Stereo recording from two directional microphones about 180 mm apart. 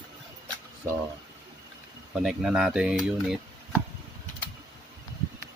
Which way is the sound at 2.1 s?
5° right (ahead or behind).